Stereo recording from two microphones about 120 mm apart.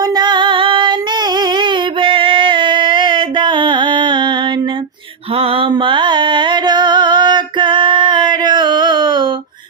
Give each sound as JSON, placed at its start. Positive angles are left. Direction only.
{"t": 0.0, "sound": "female singing", "side_deg": -35}
{"t": 5.3, "sound": "mantra", "side_deg": -55}